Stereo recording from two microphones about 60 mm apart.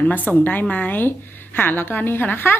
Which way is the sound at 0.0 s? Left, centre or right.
Left.